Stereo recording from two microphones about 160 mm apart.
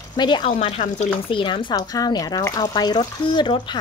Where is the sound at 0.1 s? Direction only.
30° left (ahead or behind); by 1.1 s 45° left (ahead or behind).